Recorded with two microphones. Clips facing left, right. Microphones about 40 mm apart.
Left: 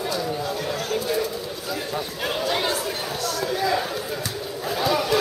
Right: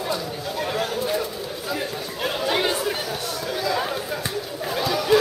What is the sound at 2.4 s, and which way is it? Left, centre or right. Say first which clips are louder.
Chatter: right 2 dB; centre.